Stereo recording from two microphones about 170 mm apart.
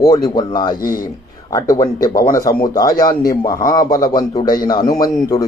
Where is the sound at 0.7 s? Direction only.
55° left (ahead or behind).